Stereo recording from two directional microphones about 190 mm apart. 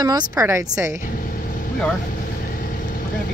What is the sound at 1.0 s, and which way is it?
Vehicle, 45° left (ahead or behind).